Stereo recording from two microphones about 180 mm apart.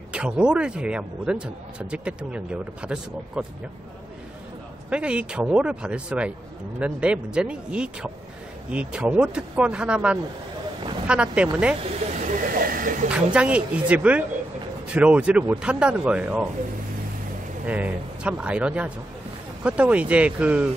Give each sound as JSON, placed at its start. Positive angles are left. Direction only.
{"t": 0.1, "sound": "a man's voice", "side_deg": -5}
{"t": 4.8, "sound": "a man's voice", "side_deg": -5}
{"t": 12.3, "sound": "a sound", "side_deg": -50}
{"t": 13.1, "sound": "speech", "side_deg": -5}
{"t": 17.6, "sound": "speech", "side_deg": -10}